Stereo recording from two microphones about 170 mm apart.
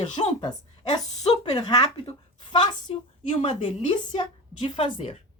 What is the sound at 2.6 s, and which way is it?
Speech, 35° left (ahead or behind).